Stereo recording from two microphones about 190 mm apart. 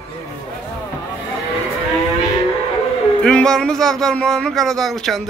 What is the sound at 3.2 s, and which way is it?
Speech, 5° left (ahead or behind).